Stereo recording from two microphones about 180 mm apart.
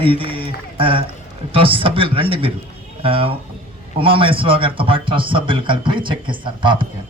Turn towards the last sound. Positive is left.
turn(degrees=-25)  # may be behind; listen again after turning